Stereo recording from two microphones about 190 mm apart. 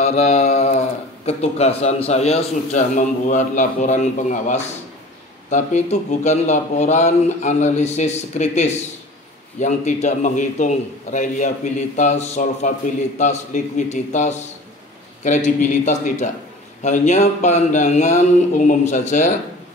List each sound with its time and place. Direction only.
0.0 s speech: 35° left (ahead or behind)